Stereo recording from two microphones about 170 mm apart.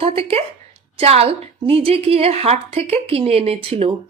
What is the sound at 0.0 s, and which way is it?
A woman's voice, 35° right (ahead or behind).